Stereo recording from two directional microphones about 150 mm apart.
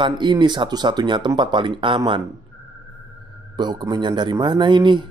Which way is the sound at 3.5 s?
30° right (ahead or behind).